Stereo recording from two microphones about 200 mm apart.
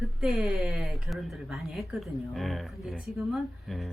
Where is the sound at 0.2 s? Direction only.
Centre (ahead or behind).